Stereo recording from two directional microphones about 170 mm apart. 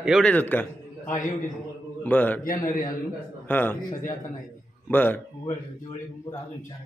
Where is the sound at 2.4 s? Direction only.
55° left (ahead or behind).